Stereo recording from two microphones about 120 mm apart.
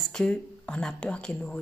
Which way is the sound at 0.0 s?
5° left (ahead or behind).